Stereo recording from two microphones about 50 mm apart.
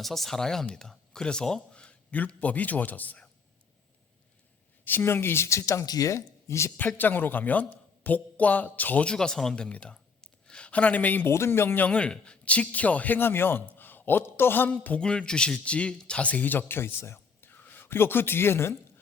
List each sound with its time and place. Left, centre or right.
0.0 s a man's voice: centre; by 3.2 s left
4.9 s a man's voice: left
5.5 s speech: left
6.7 s speech: left
9.0 s speech: centre
9.6 s speech: left
9.9 s a sound: centre
10.7 s speech: left
11.3 s speech: left
11.9 s speech: left
13.1 s a man's voice: left
14.9 s speech: centre; by 17.5 s left
17.5 s a sound: left
17.8 s a man's voice: left